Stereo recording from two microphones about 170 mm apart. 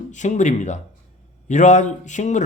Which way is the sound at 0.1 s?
45° left (ahead or behind).